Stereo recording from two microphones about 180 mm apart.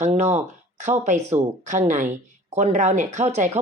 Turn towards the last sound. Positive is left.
turn(degrees=-40)  # may be behind; listen again after turning